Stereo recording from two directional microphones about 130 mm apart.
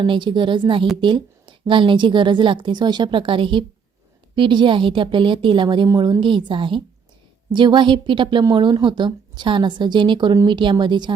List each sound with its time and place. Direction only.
0.0 s a woman's voice: 35° right (ahead or behind)